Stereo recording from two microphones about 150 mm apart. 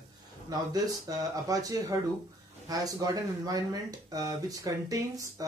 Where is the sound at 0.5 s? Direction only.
25° right (ahead or behind).